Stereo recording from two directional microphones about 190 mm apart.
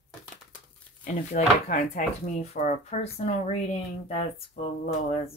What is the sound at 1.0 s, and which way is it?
Speech, 40° left (ahead or behind).